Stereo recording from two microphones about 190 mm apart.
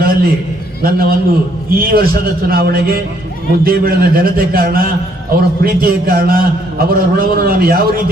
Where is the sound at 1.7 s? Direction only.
50° right (ahead or behind).